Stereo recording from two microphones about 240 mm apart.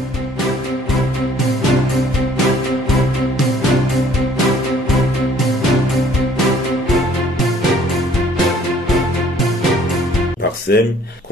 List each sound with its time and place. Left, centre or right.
10.8 s speech: left